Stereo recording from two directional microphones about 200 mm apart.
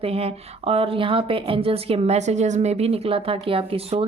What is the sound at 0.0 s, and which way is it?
A woman's voice, 30° right (ahead or behind).